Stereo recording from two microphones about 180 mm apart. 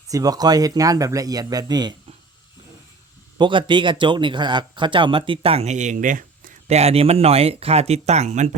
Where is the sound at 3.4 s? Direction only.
25° right (ahead or behind).